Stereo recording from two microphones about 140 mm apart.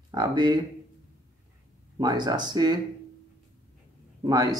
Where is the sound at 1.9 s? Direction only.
30° right (ahead or behind).